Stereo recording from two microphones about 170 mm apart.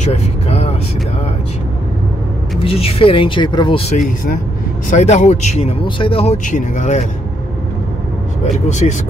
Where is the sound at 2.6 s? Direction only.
35° left (ahead or behind).